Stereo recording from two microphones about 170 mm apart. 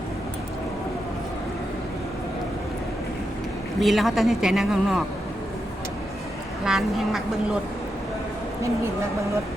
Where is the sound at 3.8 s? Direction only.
Centre (ahead or behind).